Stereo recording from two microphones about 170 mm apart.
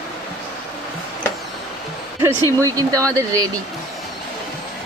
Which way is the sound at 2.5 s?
20° right (ahead or behind).